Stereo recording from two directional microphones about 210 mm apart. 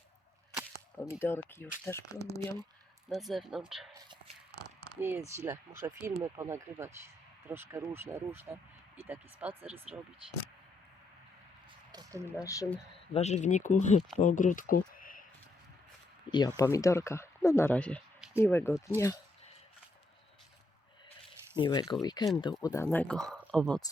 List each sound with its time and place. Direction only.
0.9 s speech: 10° left (ahead or behind)
3.1 s speech: centre (ahead or behind)
4.9 s speech: 10° right (ahead or behind)
11.9 s a sound: 15° right (ahead or behind)
12.3 s speech: 15° left (ahead or behind)
13.1 s speech: 30° left (ahead or behind)
16.6 s speech: 15° left (ahead or behind)
21.5 s speech: 25° left (ahead or behind); by 23.8 s 5° left (ahead or behind)